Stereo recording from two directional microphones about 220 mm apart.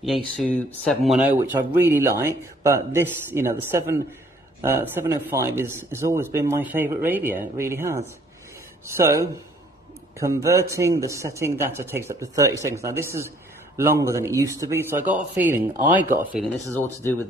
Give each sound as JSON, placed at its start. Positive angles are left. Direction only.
{"t": 0.0, "sound": "speech", "side_deg": 0}
{"t": 16.1, "sound": "speech", "side_deg": -40}
{"t": 16.7, "sound": "speech", "side_deg": 10}